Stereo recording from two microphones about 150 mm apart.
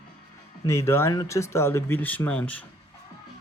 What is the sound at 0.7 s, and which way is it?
Speech, 20° left (ahead or behind).